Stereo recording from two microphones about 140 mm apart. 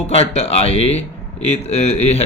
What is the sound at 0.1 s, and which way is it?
Mantra, 50° left (ahead or behind).